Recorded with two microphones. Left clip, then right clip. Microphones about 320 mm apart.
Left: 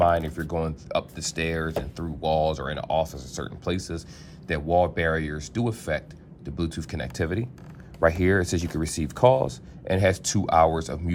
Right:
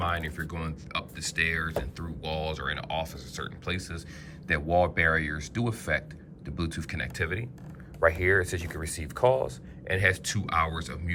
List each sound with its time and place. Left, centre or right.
0.0 s speech: centre
8.4 s speech: centre